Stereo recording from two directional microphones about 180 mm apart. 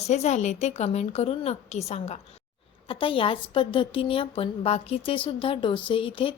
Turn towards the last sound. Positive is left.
turn(degrees=30)  # may be behind; listen again after turning